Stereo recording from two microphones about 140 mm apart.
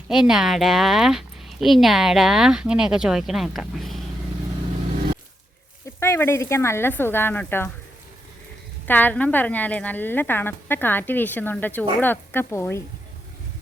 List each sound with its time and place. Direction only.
0.1 s speech: 5° right (ahead or behind)
6.0 s a woman's voice: 20° left (ahead or behind)
8.9 s a woman's voice: 10° left (ahead or behind)